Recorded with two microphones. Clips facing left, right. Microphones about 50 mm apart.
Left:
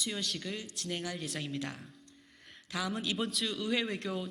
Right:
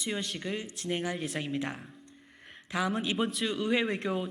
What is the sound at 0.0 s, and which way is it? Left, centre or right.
Speech, right.